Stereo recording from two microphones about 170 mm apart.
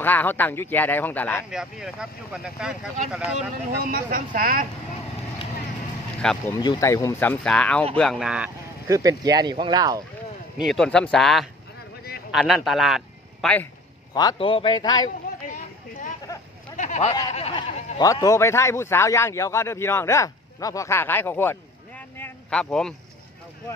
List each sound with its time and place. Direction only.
0.0 s speech: 10° left (ahead or behind)
1.5 s speech: 5° right (ahead or behind)
3.3 s speech: 55° right (ahead or behind)
6.5 s speech: 20° left (ahead or behind); by 8.5 s 5° right (ahead or behind)
8.8 s speech: 20° right (ahead or behind)
10.6 s speech: centre (ahead or behind)
14.1 s a man's voice: 30° left (ahead or behind)
16.7 s a sound: 45° left (ahead or behind)
17.3 s speech: 35° left (ahead or behind); by 22.9 s 5° left (ahead or behind)